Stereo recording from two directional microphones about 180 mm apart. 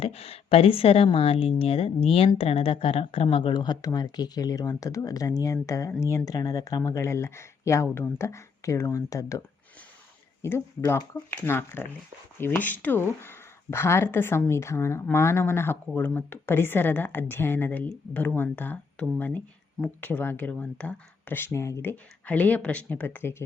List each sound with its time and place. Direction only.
0.0 s speech: 35° left (ahead or behind); by 9.4 s 20° left (ahead or behind)
10.4 s speech: 15° left (ahead or behind)